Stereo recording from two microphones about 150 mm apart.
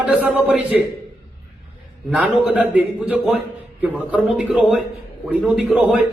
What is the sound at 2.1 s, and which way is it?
A man's voice, 10° right (ahead or behind).